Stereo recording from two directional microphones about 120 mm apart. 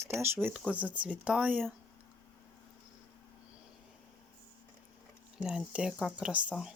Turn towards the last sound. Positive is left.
turn(degrees=-10)  # may be behind; listen again after turning